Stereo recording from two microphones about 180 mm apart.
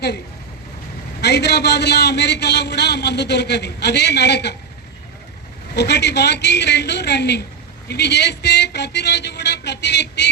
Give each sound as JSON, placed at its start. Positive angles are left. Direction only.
{"t": 1.2, "sound": "a man's voice", "side_deg": 70}
{"t": 5.7, "sound": "a man's voice", "side_deg": 70}